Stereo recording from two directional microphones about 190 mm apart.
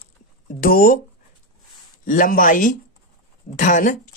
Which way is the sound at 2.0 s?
45° left (ahead or behind).